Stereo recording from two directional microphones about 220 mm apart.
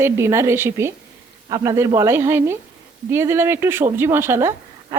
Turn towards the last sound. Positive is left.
turn(degrees=-10)  # may be behind; listen again after turning